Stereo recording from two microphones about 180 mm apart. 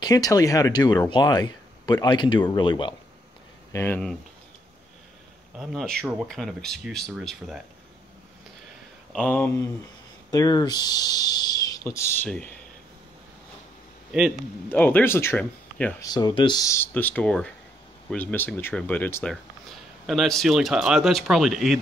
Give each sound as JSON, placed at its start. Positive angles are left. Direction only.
{"t": 0.0, "sound": "speech", "side_deg": 20}
{"t": 3.7, "sound": "speech", "side_deg": 10}
{"t": 5.6, "sound": "speech", "side_deg": 0}
{"t": 9.1, "sound": "speech", "side_deg": 5}
{"t": 12.3, "sound": "speech", "side_deg": 5}
{"t": 14.1, "sound": "speech", "side_deg": 0}
{"t": 14.7, "sound": "speech", "side_deg": 10}
{"t": 16.0, "sound": "speech", "side_deg": 20}
{"t": 20.1, "sound": "speech", "side_deg": 0}